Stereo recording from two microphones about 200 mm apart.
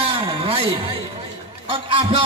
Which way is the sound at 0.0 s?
25° right (ahead or behind).